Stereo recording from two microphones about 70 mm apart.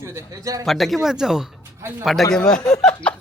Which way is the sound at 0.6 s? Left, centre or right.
Centre.